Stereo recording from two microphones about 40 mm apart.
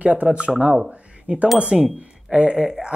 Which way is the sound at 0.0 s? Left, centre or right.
Right.